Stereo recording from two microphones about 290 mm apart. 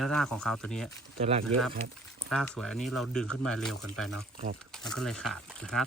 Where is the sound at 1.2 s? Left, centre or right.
Right.